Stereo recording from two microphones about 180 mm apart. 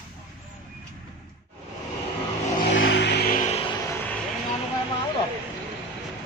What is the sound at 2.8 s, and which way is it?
Vehicle, 70° left (ahead or behind).